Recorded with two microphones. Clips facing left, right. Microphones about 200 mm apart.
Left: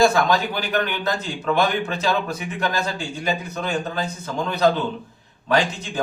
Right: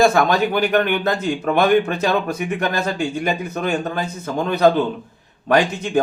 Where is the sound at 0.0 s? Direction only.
50° right (ahead or behind).